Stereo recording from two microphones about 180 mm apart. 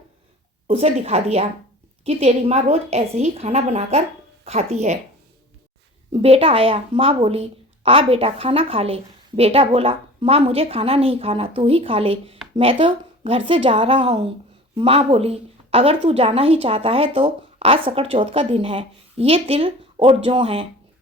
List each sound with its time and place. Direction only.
0.7 s speech: 35° right (ahead or behind)
6.1 s speech: 35° right (ahead or behind)